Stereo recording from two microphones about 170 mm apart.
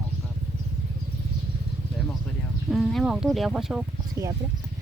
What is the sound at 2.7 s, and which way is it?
Speech, centre (ahead or behind).